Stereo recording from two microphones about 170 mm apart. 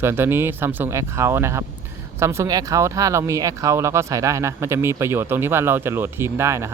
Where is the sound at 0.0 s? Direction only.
15° right (ahead or behind).